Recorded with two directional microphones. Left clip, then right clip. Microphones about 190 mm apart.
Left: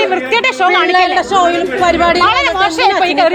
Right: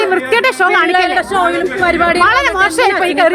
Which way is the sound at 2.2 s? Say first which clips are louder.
Even; 35° right (ahead or behind).